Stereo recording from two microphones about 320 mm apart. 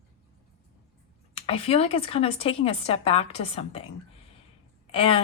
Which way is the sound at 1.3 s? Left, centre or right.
Centre.